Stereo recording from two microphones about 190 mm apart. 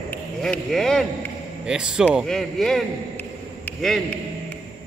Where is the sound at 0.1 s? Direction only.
5° left (ahead or behind).